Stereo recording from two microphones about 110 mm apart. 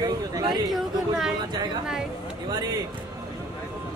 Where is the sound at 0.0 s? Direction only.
40° right (ahead or behind).